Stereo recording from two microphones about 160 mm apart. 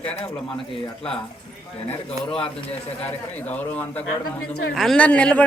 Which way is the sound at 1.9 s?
35° left (ahead or behind).